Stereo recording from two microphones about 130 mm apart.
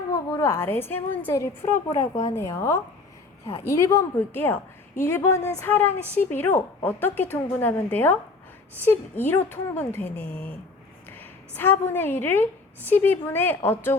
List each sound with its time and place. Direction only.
0.1 s a woman's voice: 20° left (ahead or behind)